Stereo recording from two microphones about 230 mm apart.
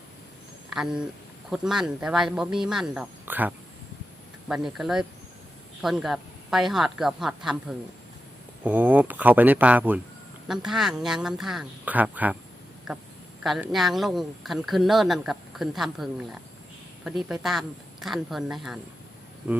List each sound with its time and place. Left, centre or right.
0.7 s speech: centre